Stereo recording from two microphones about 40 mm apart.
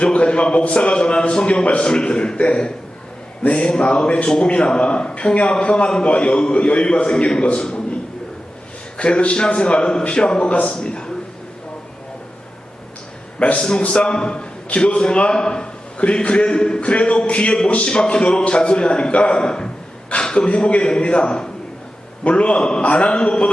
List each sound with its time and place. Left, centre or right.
0.0 s speech: left
9.0 s speech: left
13.6 s speech: left
16.8 s speech: left